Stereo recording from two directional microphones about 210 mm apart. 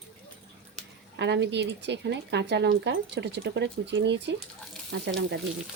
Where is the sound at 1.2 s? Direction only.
55° right (ahead or behind).